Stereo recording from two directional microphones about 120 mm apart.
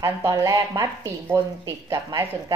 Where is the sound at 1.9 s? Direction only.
30° right (ahead or behind).